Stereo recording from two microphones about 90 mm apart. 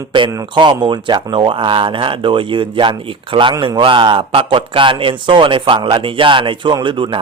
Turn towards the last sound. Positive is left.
turn(degrees=-65)  # may be behind; listen again after turning